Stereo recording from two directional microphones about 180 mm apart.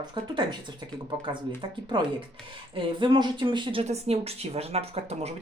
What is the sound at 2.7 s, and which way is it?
Speech, 25° right (ahead or behind).